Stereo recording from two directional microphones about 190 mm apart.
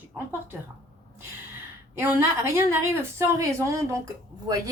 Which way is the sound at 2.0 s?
10° right (ahead or behind).